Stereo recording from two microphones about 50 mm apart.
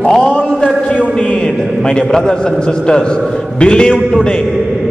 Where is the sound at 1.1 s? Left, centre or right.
Centre.